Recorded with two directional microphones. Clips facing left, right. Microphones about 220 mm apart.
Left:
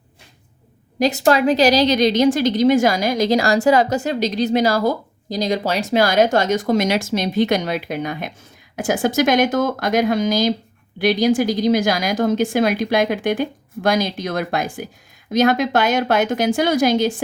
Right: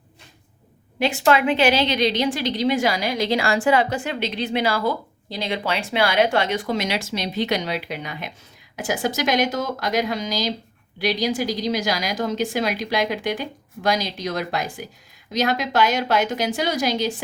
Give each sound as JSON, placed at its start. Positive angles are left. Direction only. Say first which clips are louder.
{"t": 0.9, "sound": "a woman's voice", "louder": "left 3 dB", "side_deg": 40}